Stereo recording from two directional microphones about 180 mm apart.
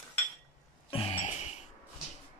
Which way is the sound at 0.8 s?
30° left (ahead or behind).